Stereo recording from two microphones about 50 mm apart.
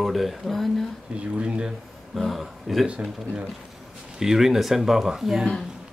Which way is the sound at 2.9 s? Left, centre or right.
Right.